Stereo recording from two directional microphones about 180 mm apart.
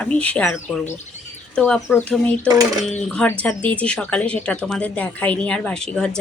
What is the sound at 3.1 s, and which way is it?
Speech, 5° left (ahead or behind).